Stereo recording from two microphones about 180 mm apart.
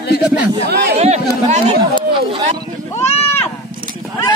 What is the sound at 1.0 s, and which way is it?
Chatter, 40° right (ahead or behind).